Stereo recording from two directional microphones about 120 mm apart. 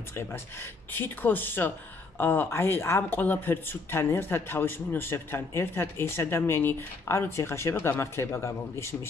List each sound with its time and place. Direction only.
0.1 s speech: 20° left (ahead or behind)